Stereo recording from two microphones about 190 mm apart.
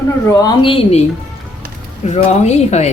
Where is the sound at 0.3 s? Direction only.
20° left (ahead or behind).